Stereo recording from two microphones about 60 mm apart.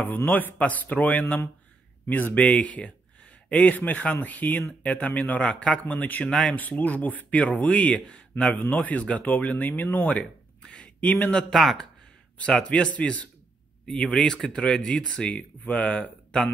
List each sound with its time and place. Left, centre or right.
0.0 s speech: left
8.5 s speech: left
10.6 s a sound: centre
11.0 s speech: left
11.3 s speech: centre
12.6 s speech: centre
15.2 s speech: left